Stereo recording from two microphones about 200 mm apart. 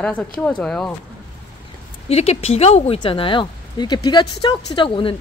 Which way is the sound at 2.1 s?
30° left (ahead or behind).